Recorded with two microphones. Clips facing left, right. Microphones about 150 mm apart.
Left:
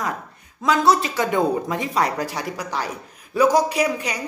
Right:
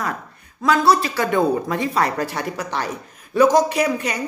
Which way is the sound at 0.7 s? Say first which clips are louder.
Right 1 dB; 20° left (ahead or behind).